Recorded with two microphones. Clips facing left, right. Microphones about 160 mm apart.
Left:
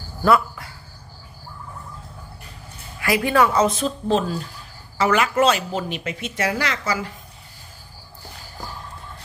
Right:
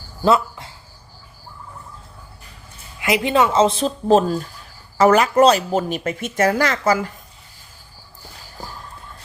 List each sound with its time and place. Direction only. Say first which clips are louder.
0.3 s speech: right 1 dB; 25° right (ahead or behind)
3.0 s speech: right 1 dB; 20° right (ahead or behind); by 7.1 s 45° right (ahead or behind)